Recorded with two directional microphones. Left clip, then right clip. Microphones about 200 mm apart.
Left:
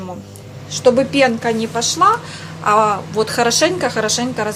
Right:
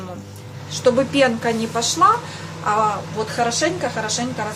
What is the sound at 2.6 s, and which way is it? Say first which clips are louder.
A woman's voice: left 5 dB; 35° left (ahead or behind).